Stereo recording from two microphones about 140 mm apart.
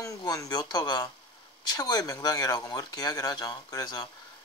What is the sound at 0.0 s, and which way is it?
Speech, 25° left (ahead or behind).